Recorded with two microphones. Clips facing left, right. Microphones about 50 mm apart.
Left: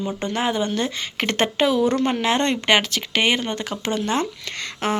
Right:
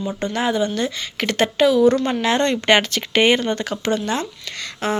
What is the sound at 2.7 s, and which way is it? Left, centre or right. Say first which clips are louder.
Speech: right 3 dB; centre.